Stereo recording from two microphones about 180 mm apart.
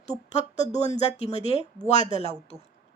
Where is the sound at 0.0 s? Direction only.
40° left (ahead or behind).